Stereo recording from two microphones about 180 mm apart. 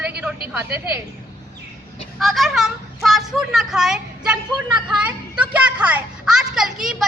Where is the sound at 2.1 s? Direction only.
Centre (ahead or behind).